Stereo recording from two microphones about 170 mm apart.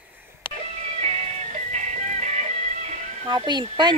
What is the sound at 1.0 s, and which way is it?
Music, 40° right (ahead or behind).